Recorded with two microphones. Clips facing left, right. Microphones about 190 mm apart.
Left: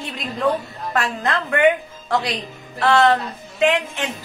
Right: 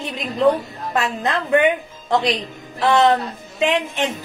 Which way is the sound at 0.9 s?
20° right (ahead or behind).